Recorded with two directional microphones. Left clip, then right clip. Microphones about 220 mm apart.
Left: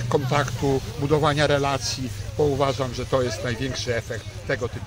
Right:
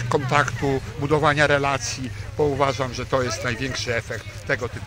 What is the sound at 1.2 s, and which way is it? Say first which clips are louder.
A man's voice: right 4 dB; 30° left (ahead or behind).